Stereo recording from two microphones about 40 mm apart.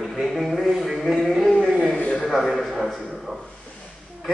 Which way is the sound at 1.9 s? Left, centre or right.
Left.